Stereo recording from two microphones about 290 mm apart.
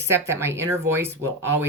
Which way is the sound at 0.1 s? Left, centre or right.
Centre.